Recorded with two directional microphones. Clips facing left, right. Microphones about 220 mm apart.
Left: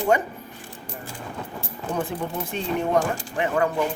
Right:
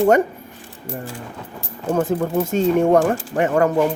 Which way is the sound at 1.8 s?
45° right (ahead or behind).